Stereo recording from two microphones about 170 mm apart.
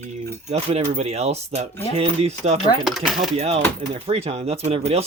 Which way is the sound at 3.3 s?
40° right (ahead or behind).